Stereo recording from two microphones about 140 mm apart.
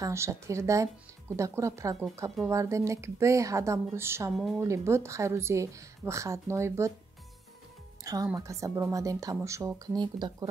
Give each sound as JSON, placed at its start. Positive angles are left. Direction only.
{"t": 0.0, "sound": "speech", "side_deg": -20}
{"t": 8.0, "sound": "speech", "side_deg": -25}
{"t": 9.9, "sound": "speech", "side_deg": -30}